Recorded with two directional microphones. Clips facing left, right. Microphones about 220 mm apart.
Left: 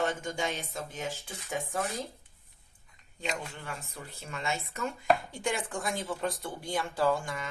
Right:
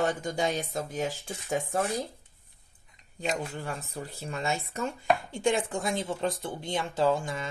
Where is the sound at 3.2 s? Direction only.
40° right (ahead or behind).